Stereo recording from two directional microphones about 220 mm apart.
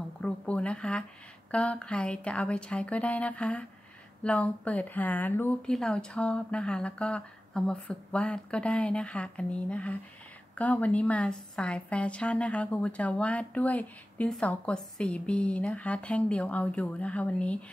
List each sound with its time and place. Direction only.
0.2 s a woman's voice: 5° left (ahead or behind)